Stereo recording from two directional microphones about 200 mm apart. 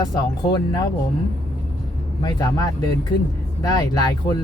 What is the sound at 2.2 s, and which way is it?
Speech, 20° left (ahead or behind).